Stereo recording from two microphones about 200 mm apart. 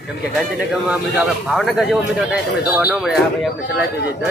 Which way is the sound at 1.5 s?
Centre (ahead or behind).